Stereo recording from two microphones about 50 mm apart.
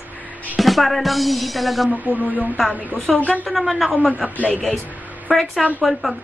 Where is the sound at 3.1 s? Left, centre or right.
Centre.